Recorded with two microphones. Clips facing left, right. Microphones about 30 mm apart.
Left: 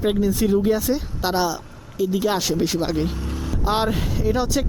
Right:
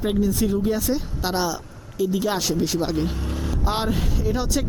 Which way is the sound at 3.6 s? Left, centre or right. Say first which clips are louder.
Left 4 dB; centre.